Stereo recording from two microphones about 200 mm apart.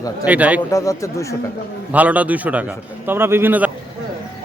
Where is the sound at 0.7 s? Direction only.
15° left (ahead or behind).